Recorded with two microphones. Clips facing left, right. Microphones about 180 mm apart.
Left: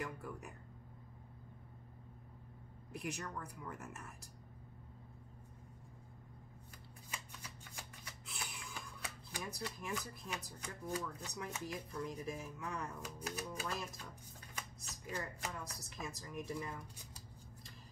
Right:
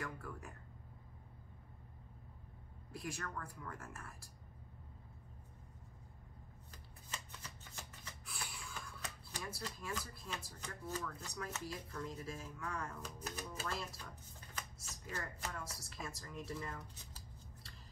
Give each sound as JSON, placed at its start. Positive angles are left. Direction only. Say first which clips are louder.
{"t": 0.0, "sound": "speech", "louder": "left 2 dB", "side_deg": 15}
{"t": 2.9, "sound": "speech", "louder": "left 1 dB", "side_deg": 15}
{"t": 7.1, "sound": "shuffling cards", "louder": "even", "side_deg": 10}
{"t": 9.3, "sound": "speech", "louder": "left 2 dB", "side_deg": 15}